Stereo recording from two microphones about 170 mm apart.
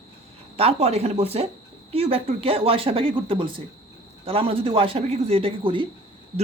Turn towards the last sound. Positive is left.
turn(degrees=-30)  # may be behind; listen again after turning